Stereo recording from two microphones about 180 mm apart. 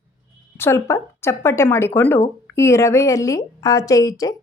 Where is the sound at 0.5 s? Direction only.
15° left (ahead or behind).